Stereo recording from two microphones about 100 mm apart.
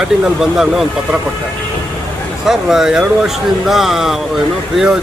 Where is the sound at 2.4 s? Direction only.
5° right (ahead or behind).